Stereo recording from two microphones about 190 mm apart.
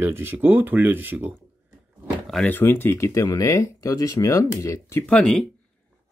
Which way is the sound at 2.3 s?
5° left (ahead or behind).